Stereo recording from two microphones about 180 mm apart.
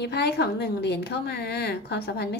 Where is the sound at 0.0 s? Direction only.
65° left (ahead or behind).